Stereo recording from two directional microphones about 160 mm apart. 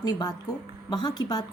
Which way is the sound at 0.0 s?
25° left (ahead or behind).